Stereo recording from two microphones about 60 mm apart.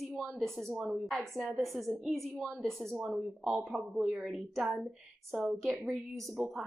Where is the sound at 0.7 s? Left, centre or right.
Centre.